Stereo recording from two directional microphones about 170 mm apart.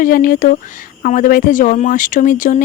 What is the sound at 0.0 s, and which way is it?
Speech, 55° left (ahead or behind).